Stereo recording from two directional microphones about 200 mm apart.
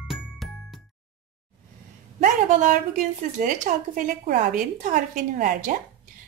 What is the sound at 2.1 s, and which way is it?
A woman's voice, 40° right (ahead or behind).